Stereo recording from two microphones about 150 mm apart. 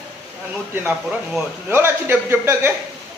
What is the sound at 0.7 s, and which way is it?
A man's voice, 10° right (ahead or behind).